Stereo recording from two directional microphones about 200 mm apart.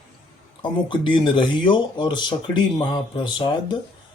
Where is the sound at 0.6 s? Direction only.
25° left (ahead or behind).